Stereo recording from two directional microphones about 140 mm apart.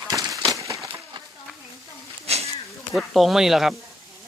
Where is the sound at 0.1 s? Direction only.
25° right (ahead or behind).